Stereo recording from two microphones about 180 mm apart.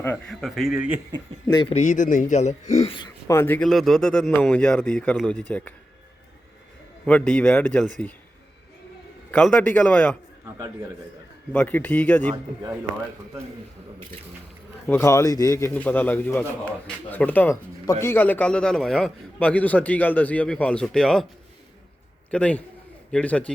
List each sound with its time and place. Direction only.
0.0 s a man's voice: 5° left (ahead or behind)
1.5 s speech: 25° left (ahead or behind)
1.7 s a man's voice: 40° left (ahead or behind); by 5.7 s 10° left (ahead or behind)
7.0 s a man's voice: 5° left (ahead or behind)
9.3 s a man's voice: 10° left (ahead or behind)
11.5 s a man's voice: 10° left (ahead or behind)
14.8 s a man's voice: 15° left (ahead or behind)
22.3 s a man's voice: 5° left (ahead or behind)